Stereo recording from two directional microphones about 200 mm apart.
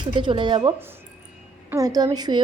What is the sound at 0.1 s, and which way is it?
Speech, 25° right (ahead or behind).